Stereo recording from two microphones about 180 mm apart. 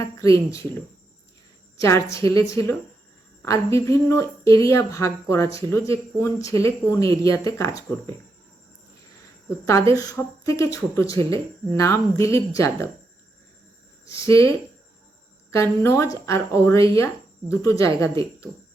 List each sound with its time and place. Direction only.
0.0 s speech: 15° left (ahead or behind)
1.8 s speech: 15° left (ahead or behind)
9.9 s speech: 20° left (ahead or behind)
11.0 s speech: 30° right (ahead or behind)
11.3 s speech: 15° left (ahead or behind)
14.0 s speech: 15° left (ahead or behind)